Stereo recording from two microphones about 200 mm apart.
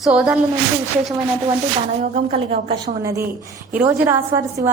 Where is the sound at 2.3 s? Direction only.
30° right (ahead or behind).